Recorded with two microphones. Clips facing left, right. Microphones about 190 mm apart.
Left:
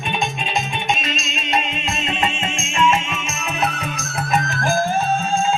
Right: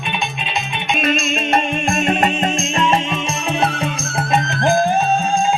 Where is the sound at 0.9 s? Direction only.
55° right (ahead or behind).